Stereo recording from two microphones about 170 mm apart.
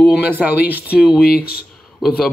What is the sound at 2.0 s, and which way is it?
Speech, centre (ahead or behind).